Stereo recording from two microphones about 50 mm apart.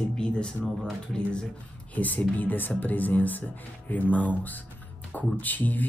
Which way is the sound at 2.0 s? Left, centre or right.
Left.